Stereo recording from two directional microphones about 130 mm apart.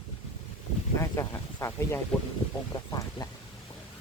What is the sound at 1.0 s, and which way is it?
Speech, 25° left (ahead or behind).